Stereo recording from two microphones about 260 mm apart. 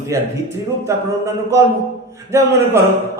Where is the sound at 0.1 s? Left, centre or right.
Centre.